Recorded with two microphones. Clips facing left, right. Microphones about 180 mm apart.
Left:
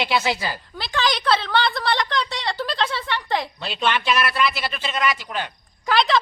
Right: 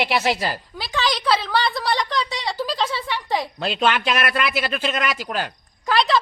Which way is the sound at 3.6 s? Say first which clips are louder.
Right 3 dB; 50° right (ahead or behind).